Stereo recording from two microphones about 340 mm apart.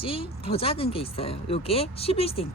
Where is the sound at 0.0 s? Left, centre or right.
Centre.